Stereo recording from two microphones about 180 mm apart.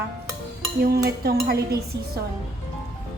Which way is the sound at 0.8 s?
60° right (ahead or behind).